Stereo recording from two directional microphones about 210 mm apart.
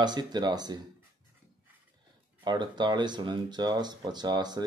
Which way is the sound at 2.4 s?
20° right (ahead or behind).